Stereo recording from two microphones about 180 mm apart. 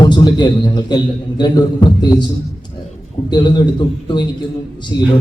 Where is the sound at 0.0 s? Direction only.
25° left (ahead or behind).